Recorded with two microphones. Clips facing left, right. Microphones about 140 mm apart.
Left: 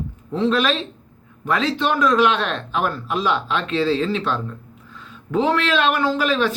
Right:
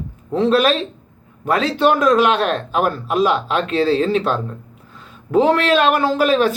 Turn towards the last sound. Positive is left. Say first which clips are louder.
# right 4 dB
turn(degrees=-45)  # may be behind; listen again after turning